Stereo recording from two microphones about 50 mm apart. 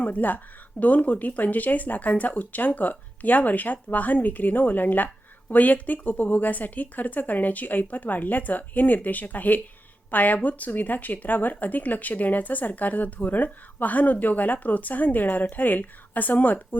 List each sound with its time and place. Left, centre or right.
0.0 s speech: left